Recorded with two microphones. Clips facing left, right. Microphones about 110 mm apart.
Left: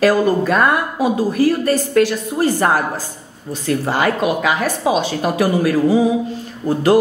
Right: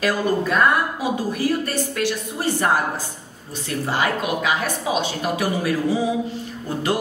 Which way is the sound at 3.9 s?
50° left (ahead or behind).